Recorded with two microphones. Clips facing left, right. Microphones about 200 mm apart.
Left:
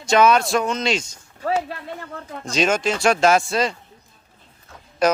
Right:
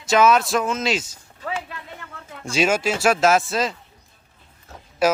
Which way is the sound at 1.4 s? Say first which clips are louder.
Left 7 dB; 40° left (ahead or behind).